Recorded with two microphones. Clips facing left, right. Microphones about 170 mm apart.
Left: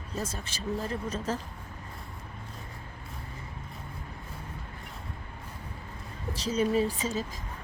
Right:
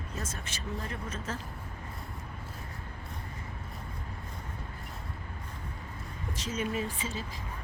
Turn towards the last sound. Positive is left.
turn(degrees=40)  # may be behind; listen again after turning